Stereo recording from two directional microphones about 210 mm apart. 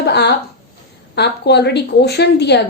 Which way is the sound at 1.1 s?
55° left (ahead or behind).